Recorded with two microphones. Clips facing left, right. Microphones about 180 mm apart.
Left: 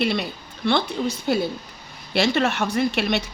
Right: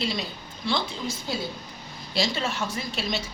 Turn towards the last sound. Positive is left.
turn(degrees=65)  # may be behind; listen again after turning